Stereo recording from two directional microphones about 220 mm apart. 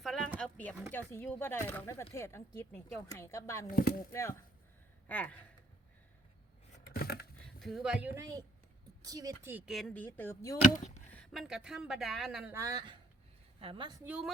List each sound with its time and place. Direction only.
0.0 s a sound: centre (ahead or behind)
0.9 s a woman's voice: 10° left (ahead or behind)
3.7 s speech: 40° left (ahead or behind)
4.1 s a woman's voice: 10° left (ahead or behind)
6.9 s a sound: 45° left (ahead or behind)
7.6 s speech: centre (ahead or behind)
10.6 s speech: 30° left (ahead or behind)
11.1 s speech: centre (ahead or behind)
12.5 s speech: 15° right (ahead or behind)
14.0 s speech: 5° right (ahead or behind)